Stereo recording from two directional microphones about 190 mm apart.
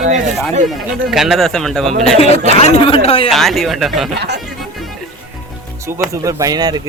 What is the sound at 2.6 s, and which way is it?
Speech, 30° left (ahead or behind).